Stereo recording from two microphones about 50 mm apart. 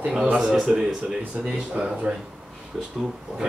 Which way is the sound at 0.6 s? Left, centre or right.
Centre.